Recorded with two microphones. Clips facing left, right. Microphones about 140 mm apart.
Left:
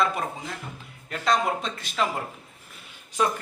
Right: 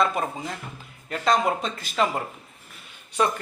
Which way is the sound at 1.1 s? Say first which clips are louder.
Right 2 dB; centre (ahead or behind).